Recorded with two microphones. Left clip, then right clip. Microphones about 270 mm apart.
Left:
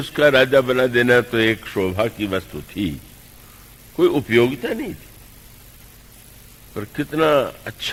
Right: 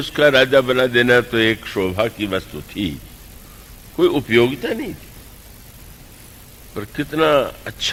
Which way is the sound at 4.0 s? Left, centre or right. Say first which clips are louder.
Right 1 dB; right.